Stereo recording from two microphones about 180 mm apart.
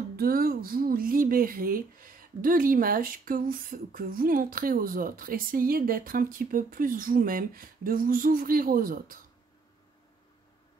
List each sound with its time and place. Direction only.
0.1 s speech: 55° right (ahead or behind)